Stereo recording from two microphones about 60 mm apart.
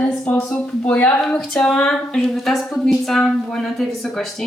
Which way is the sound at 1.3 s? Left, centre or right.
Centre.